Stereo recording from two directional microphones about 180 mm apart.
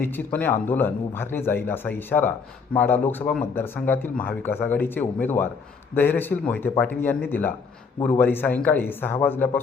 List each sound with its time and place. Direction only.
0.0 s speech: 10° left (ahead or behind)